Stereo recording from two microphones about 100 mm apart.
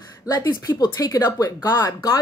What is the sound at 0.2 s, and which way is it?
A woman's voice, 35° left (ahead or behind).